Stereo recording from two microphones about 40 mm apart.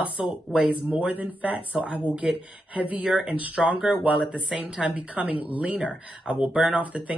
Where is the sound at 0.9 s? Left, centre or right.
Right.